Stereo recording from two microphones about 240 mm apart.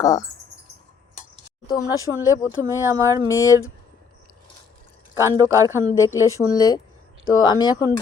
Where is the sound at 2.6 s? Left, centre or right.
Centre.